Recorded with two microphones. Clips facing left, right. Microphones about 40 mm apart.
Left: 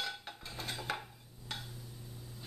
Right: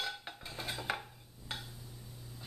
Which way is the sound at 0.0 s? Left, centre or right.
Centre.